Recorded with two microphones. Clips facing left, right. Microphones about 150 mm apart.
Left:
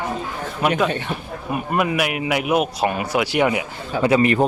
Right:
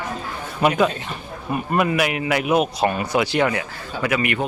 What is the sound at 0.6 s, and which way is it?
Speech, centre (ahead or behind).